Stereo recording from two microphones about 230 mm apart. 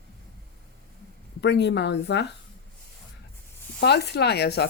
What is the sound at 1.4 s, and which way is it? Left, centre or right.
Speech, left.